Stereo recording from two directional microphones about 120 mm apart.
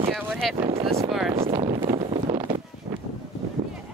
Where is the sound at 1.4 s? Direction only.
50° right (ahead or behind).